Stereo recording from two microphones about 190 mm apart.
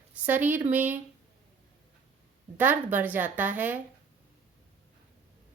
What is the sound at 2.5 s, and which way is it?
A woman's voice, 10° right (ahead or behind).